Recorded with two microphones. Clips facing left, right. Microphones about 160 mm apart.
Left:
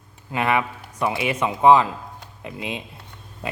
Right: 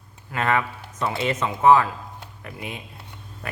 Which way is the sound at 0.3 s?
15° left (ahead or behind).